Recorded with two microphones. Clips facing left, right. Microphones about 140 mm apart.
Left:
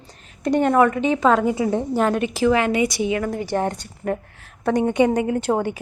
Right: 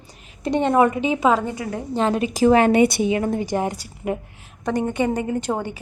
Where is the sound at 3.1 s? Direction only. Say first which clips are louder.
Right 1 dB; 25° right (ahead or behind).